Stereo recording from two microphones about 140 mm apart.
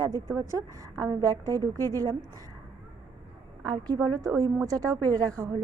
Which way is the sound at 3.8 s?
25° right (ahead or behind).